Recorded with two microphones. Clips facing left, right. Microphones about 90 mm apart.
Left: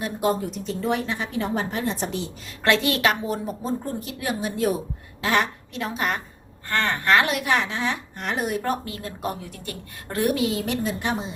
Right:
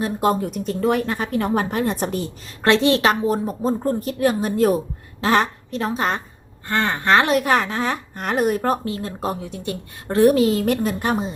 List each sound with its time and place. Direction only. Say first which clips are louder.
0.0 s a woman's voice: right 4 dB; 50° right (ahead or behind)
2.6 s a woman's voice: right 5 dB; 30° right (ahead or behind)
6.7 s a woman's voice: right 3 dB; 20° right (ahead or behind); by 11.3 s 45° right (ahead or behind)